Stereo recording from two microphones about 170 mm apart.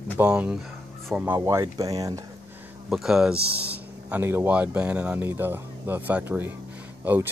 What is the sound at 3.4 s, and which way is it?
Speech, 70° right (ahead or behind).